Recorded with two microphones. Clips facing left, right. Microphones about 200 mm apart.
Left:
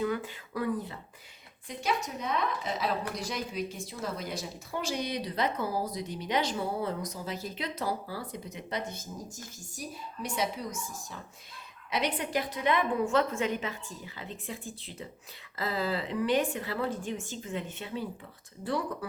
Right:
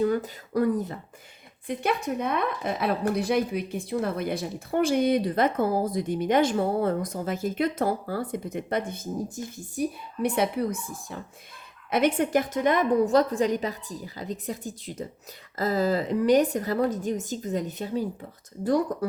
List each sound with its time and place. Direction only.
0.0 s speech: 40° right (ahead or behind)
1.6 s a woman's voice: 55° right (ahead or behind)